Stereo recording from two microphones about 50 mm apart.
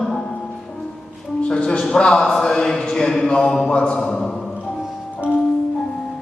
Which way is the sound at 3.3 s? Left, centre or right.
Centre.